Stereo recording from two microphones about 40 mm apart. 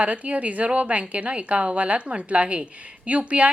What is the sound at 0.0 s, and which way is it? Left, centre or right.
A woman's voice, right.